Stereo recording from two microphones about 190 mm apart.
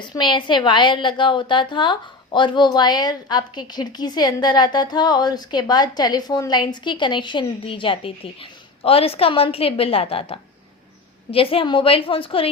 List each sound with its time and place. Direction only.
0.0 s a woman's voice: 25° left (ahead or behind)